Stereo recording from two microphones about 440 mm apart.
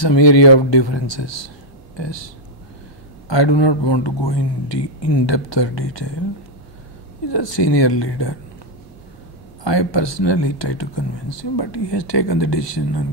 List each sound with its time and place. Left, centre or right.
0.0 s speech: left
3.3 s speech: left
7.2 s speech: left
9.7 s speech: left